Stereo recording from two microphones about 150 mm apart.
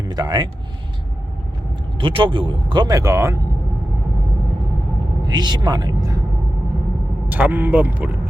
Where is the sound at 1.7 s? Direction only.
35° right (ahead or behind); by 3.4 s 20° right (ahead or behind).